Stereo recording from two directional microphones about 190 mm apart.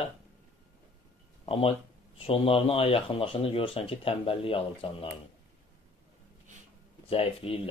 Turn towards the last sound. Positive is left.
turn(degrees=30)  # may be behind; listen again after turning